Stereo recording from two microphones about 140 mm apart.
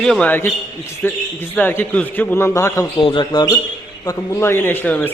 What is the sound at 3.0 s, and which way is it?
A man's voice, 40° left (ahead or behind).